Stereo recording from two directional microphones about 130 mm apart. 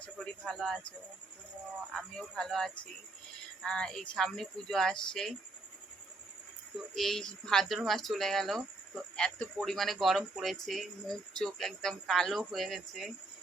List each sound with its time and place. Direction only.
0.0 s speech: 5° left (ahead or behind)
6.7 s speech: centre (ahead or behind)